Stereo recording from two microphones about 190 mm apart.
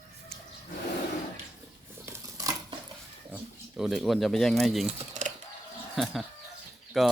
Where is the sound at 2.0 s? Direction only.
15° right (ahead or behind).